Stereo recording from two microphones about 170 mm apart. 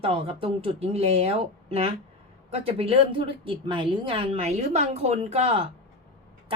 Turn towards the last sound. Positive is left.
turn(degrees=-35)  # may be behind; listen again after turning